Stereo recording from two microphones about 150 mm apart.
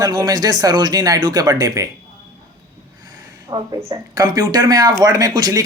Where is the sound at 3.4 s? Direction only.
30° right (ahead or behind).